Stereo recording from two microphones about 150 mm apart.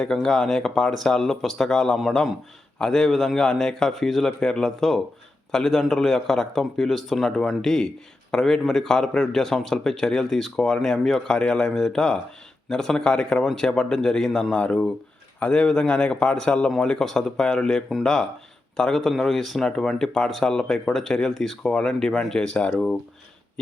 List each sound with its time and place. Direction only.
0.0 s a man's voice: 5° left (ahead or behind)